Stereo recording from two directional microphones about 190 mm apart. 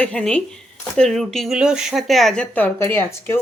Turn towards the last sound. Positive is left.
turn(degrees=10)  # may be behind; listen again after turning